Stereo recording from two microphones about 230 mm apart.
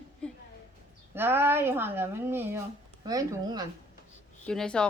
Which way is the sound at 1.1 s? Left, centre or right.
Centre.